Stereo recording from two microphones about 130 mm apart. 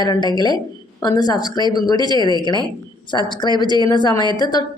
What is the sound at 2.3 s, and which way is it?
Speech, 35° left (ahead or behind).